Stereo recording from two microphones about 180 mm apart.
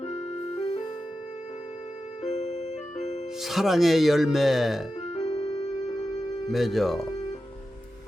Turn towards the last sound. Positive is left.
turn(degrees=0)  # may be behind; listen again after turning